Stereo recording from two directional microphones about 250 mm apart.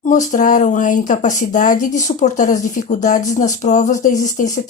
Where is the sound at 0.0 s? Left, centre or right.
Left.